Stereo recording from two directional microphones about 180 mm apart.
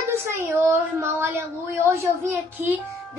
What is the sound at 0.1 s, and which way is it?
Speech, 15° right (ahead or behind).